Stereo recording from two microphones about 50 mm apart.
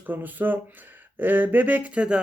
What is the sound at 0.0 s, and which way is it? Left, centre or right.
Speech, right.